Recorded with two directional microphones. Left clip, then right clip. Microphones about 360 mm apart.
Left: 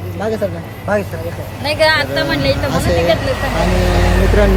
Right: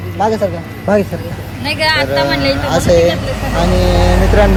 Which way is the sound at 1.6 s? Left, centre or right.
Left.